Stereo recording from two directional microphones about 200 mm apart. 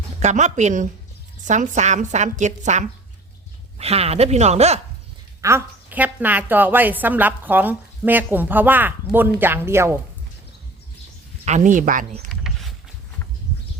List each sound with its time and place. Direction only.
0.2 s a woman's voice: 35° right (ahead or behind)
5.4 s a woman's voice: 15° right (ahead or behind)
11.4 s a woman's voice: 40° right (ahead or behind)
12.3 s a sound: centre (ahead or behind)